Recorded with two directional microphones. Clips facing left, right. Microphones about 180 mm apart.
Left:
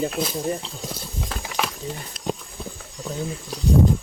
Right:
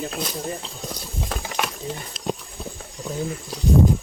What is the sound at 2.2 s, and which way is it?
Horse, 90° right.